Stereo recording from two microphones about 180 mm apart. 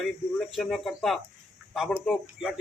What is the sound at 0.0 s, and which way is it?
A man's voice, centre (ahead or behind).